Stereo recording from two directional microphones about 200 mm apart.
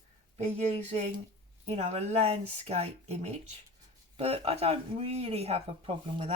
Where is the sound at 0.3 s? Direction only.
35° right (ahead or behind).